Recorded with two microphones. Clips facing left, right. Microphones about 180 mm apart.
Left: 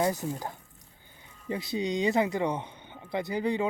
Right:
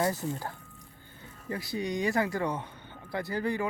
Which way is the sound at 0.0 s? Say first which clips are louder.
Left 1 dB; 15° left (ahead or behind).